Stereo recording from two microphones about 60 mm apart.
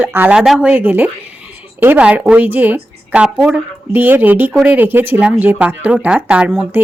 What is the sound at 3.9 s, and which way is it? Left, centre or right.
Speech, right.